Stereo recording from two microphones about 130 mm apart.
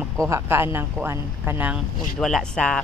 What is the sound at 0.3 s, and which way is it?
Speech, 20° right (ahead or behind).